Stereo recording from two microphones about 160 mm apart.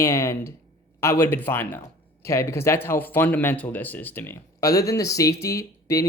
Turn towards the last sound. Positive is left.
turn(degrees=20)  # may be behind; listen again after turning